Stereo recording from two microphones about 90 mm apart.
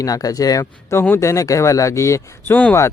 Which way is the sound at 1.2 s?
35° left (ahead or behind).